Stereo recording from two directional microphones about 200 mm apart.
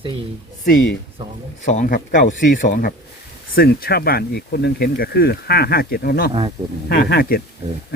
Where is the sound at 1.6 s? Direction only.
40° left (ahead or behind).